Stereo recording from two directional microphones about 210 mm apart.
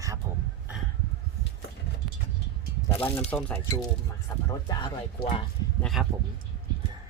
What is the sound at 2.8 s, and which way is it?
Speech, 10° left (ahead or behind).